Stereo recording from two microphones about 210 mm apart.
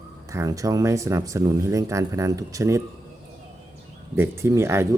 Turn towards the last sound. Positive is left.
turn(degrees=-10)  # may be behind; listen again after turning